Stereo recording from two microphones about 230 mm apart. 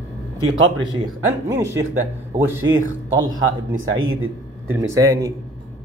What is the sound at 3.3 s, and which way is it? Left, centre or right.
Speech, right.